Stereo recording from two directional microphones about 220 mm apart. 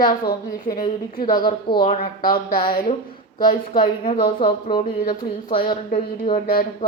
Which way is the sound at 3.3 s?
20° left (ahead or behind).